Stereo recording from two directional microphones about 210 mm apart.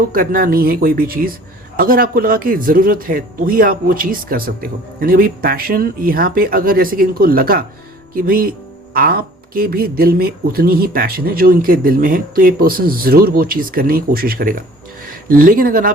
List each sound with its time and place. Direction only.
0.1 s speech: 40° right (ahead or behind)